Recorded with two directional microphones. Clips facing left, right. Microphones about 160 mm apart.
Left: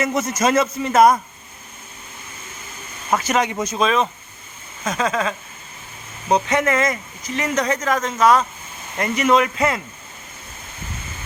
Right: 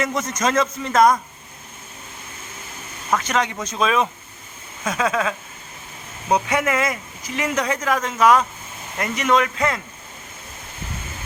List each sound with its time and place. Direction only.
0.0 s a man's voice: 5° left (ahead or behind)
3.1 s a man's voice: 10° left (ahead or behind)
3.8 s speech: 5° right (ahead or behind)
9.0 s speech: centre (ahead or behind)